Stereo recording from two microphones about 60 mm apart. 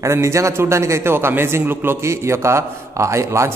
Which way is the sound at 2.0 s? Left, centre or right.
Right.